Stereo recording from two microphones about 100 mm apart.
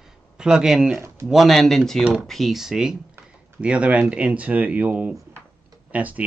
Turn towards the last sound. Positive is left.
turn(degrees=-15)  # may be behind; listen again after turning